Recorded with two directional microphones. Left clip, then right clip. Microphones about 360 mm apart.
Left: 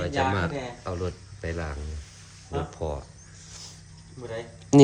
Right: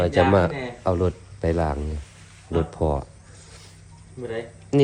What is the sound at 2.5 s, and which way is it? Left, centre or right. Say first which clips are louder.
Speech: right 7 dB; right.